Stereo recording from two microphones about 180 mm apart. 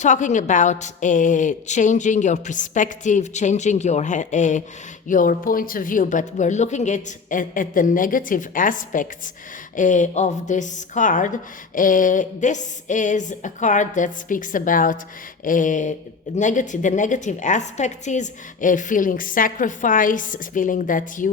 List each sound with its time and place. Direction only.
0.0 s a woman's voice: 45° left (ahead or behind)